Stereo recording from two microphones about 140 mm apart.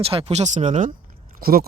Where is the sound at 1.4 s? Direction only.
90° right.